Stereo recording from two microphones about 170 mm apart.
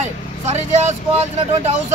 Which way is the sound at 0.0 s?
40° right (ahead or behind).